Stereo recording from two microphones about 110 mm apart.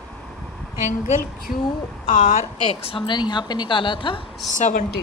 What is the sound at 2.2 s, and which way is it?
A woman's voice, 80° left.